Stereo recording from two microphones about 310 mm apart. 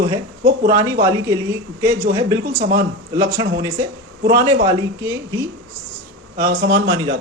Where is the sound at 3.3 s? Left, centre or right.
Centre.